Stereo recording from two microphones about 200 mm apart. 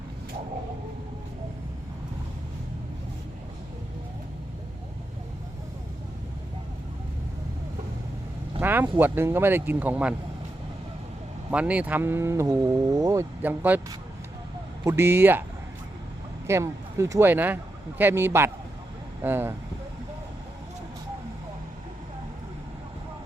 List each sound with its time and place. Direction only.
8.6 s speech: 10° right (ahead or behind)
11.5 s speech: 5° right (ahead or behind)
14.8 s speech: 10° right (ahead or behind)
16.5 s speech: 15° right (ahead or behind)